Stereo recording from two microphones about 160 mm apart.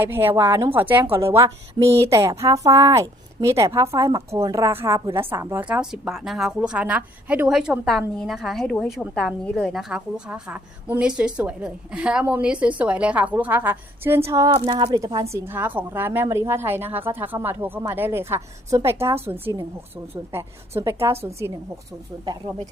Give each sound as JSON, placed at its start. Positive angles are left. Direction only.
{"t": 0.0, "sound": "a woman's voice", "side_deg": -15}